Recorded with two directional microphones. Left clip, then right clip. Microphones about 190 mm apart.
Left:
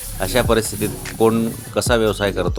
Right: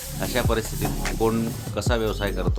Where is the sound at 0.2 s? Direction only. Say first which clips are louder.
Left 8 dB; 30° left (ahead or behind).